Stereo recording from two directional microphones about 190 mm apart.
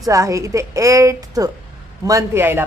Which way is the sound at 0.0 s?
15° right (ahead or behind).